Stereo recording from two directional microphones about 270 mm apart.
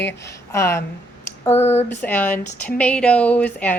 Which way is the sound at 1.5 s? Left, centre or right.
Left.